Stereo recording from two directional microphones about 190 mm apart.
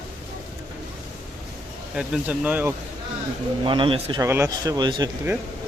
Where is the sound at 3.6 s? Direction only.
25° right (ahead or behind).